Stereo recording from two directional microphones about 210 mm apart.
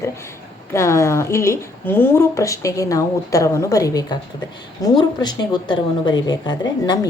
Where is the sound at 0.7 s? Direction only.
15° left (ahead or behind).